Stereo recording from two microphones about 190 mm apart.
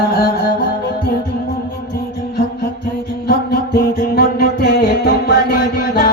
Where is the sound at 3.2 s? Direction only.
55° left (ahead or behind).